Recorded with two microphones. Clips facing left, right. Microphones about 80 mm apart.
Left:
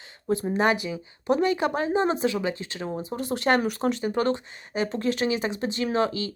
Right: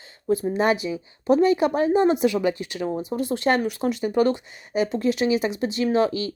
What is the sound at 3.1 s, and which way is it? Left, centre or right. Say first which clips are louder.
Speech: right 1 dB; left.